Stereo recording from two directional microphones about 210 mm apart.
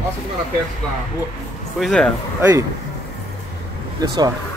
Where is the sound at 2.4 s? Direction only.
15° right (ahead or behind).